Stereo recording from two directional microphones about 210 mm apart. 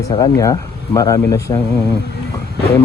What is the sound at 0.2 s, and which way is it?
Speech, 15° left (ahead or behind).